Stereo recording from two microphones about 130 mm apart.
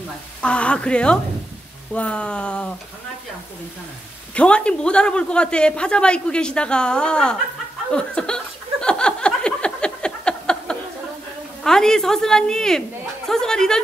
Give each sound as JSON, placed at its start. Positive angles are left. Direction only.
{"t": 0.4, "sound": "speech", "side_deg": 10}
{"t": 4.4, "sound": "speech", "side_deg": 10}
{"t": 8.8, "sound": "a sound", "side_deg": 5}
{"t": 11.6, "sound": "a woman's voice", "side_deg": 5}